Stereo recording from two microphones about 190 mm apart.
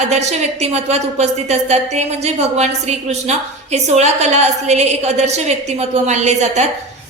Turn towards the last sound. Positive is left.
turn(degrees=-35)  # may be behind; listen again after turning